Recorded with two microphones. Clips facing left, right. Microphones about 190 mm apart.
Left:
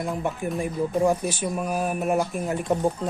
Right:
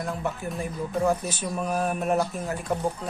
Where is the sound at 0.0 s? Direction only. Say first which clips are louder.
Left 3 dB; 15° left (ahead or behind).